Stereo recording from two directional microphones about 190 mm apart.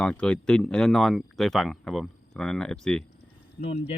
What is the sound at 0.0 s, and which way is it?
Speech, 5° left (ahead or behind).